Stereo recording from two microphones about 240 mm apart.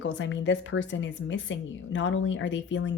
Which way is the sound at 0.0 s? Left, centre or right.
Left.